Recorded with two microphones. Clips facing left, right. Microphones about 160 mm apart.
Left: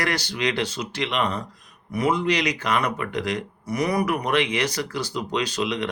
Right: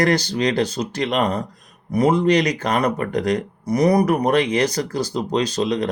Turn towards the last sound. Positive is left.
turn(degrees=-40)  # may be behind; listen again after turning